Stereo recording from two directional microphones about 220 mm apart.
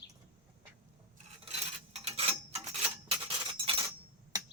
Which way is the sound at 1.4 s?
30° right (ahead or behind).